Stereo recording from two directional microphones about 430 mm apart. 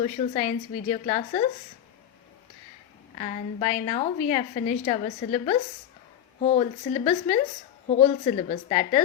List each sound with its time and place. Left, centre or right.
0.0 s a woman's voice: centre
3.2 s a woman's voice: centre